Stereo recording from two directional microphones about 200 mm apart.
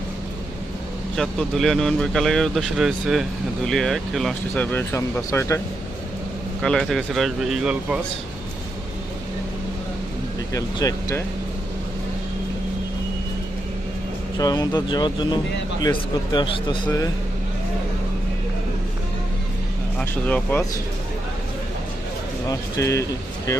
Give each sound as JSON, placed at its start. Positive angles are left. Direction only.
{"t": 1.1, "sound": "speech", "side_deg": 0}
{"t": 6.6, "sound": "speech", "side_deg": 5}
{"t": 10.5, "sound": "speech", "side_deg": 15}
{"t": 14.3, "sound": "speech", "side_deg": 20}
{"t": 20.0, "sound": "speech", "side_deg": 5}
{"t": 22.4, "sound": "speech", "side_deg": 15}